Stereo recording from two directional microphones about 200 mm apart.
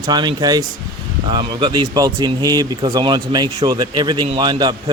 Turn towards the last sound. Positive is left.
turn(degrees=-20)  # may be behind; listen again after turning